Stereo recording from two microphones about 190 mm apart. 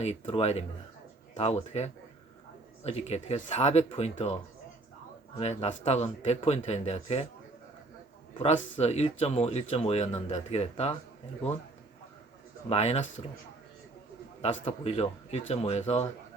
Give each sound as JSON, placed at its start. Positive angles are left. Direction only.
{"t": 0.0, "sound": "speech", "side_deg": 30}
{"t": 5.4, "sound": "speech", "side_deg": 35}
{"t": 8.8, "sound": "speech", "side_deg": 35}
{"t": 12.6, "sound": "speech", "side_deg": 35}
{"t": 14.6, "sound": "speech", "side_deg": 30}